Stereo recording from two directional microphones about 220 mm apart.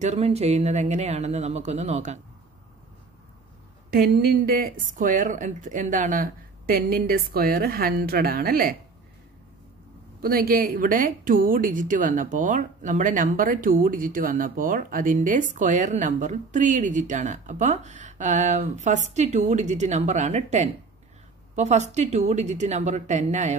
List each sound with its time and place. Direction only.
0.0 s speech: 30° right (ahead or behind)
3.9 s speech: 45° right (ahead or behind)
10.2 s speech: 40° right (ahead or behind)